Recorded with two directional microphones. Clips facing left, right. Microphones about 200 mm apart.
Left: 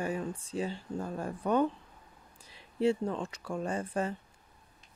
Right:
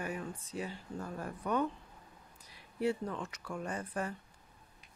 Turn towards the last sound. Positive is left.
turn(degrees=25)  # may be behind; listen again after turning